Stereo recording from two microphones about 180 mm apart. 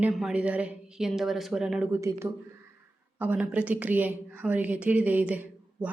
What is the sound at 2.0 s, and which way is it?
A woman's voice, 15° right (ahead or behind).